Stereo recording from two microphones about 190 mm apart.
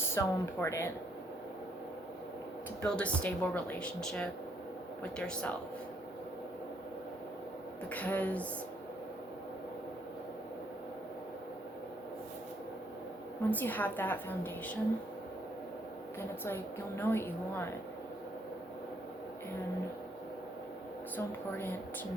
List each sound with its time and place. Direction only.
0.1 s a woman's voice: 15° left (ahead or behind)
2.8 s a woman's voice: 5° left (ahead or behind)
7.9 s a woman's voice: 10° left (ahead or behind)
13.5 s a woman's voice: 10° left (ahead or behind)
16.4 s a woman's voice: 10° left (ahead or behind)